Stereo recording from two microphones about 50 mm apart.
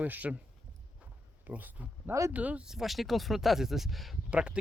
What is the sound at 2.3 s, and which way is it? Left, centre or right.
Speech, right.